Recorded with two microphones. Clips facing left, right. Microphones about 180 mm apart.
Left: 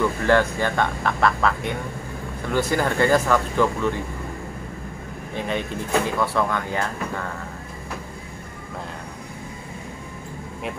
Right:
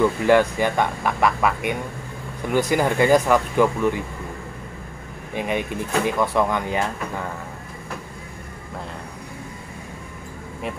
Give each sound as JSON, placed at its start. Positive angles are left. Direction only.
{"t": 0.2, "sound": "speech", "side_deg": -15}
{"t": 5.3, "sound": "speech", "side_deg": -15}